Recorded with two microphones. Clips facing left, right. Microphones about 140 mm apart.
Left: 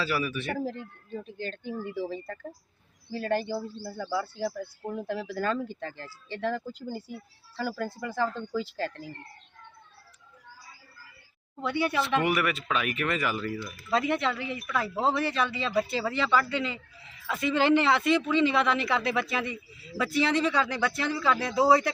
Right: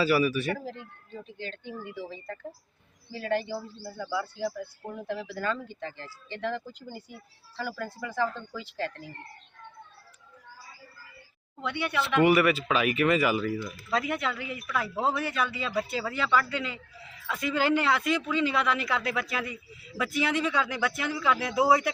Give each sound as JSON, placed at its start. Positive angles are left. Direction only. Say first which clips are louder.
{"t": 0.0, "sound": "a man's voice", "louder": "right 6 dB", "side_deg": -10}
{"t": 0.5, "sound": "speech", "louder": "left 4 dB", "side_deg": 45}
{"t": 3.9, "sound": "speech", "louder": "left 1 dB", "side_deg": 30}
{"t": 11.6, "sound": "speech", "louder": "left 3 dB", "side_deg": 35}
{"t": 12.2, "sound": "a man's voice", "louder": "right 6 dB", "side_deg": 0}